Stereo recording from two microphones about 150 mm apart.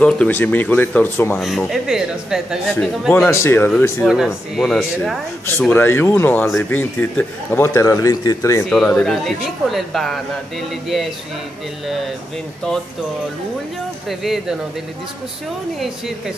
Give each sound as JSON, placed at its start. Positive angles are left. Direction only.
{"t": 0.0, "sound": "speech", "side_deg": 10}
{"t": 1.7, "sound": "speech", "side_deg": -5}
{"t": 3.3, "sound": "speech", "side_deg": 15}
{"t": 4.0, "sound": "speech", "side_deg": -5}
{"t": 5.6, "sound": "speech", "side_deg": 15}
{"t": 8.6, "sound": "speech", "side_deg": 5}
{"t": 14.0, "sound": "speech", "side_deg": 0}